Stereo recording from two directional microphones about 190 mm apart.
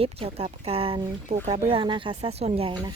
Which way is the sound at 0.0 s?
30° right (ahead or behind).